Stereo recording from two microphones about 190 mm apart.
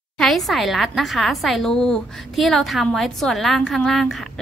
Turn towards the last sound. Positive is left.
turn(degrees=0)  # may be behind; listen again after turning